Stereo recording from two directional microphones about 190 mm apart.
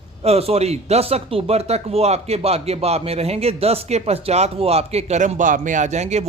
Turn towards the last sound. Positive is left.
turn(degrees=-35)  # may be behind; listen again after turning